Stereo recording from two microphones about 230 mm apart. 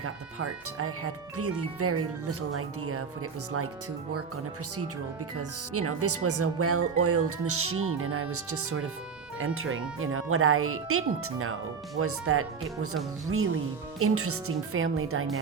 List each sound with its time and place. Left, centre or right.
0.0 s speech: right
5.4 s speech: right
9.6 s speech: right
14.0 s speech: right